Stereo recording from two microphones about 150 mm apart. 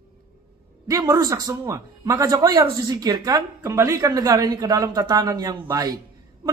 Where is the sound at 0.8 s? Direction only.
25° right (ahead or behind).